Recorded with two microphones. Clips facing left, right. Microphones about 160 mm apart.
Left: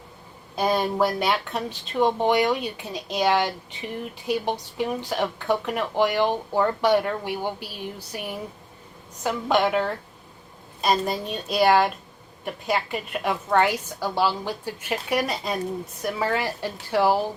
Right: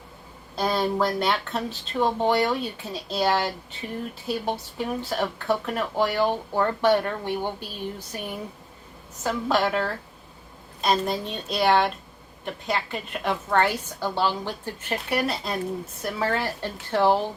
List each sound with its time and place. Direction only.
0.5 s speech: 15° left (ahead or behind)
10.8 s a woman's voice: centre (ahead or behind)